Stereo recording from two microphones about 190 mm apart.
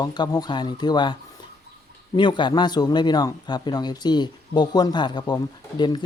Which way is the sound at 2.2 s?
25° left (ahead or behind).